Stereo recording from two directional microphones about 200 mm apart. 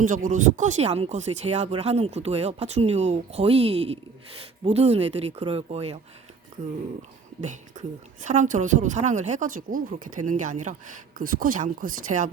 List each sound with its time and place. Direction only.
0.0 s speech: 40° right (ahead or behind)
7.4 s speech: 35° right (ahead or behind)